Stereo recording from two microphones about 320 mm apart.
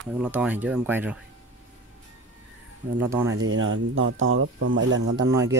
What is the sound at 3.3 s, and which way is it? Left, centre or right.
Speech, right.